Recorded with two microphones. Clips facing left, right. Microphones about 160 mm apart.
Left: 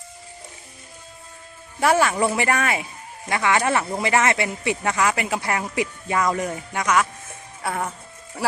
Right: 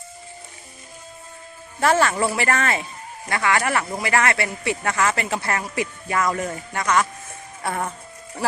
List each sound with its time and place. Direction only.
1.8 s speech: 10° left (ahead or behind)